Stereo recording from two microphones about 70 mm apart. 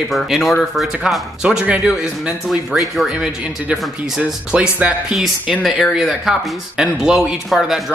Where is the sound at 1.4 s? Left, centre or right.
Centre.